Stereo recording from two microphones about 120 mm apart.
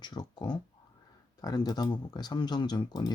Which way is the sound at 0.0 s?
35° left (ahead or behind).